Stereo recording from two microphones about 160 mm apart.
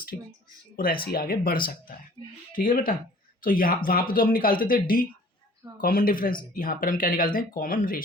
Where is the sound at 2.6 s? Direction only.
60° left (ahead or behind).